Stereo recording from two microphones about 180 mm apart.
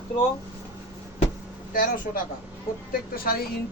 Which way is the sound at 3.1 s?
55° left (ahead or behind).